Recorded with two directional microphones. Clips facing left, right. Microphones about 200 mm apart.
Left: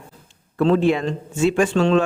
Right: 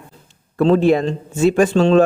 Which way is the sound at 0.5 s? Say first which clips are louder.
Right 4 dB; 40° right (ahead or behind).